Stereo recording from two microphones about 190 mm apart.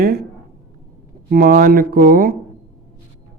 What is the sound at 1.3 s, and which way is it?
Speech, 50° right (ahead or behind).